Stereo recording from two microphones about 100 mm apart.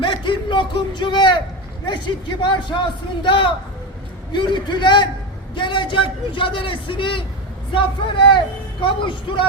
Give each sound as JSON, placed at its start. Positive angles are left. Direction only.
{"t": 0.0, "sound": "a man's voice", "side_deg": 55}